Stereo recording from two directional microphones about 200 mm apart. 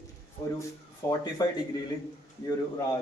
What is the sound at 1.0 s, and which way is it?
Speech, 15° left (ahead or behind).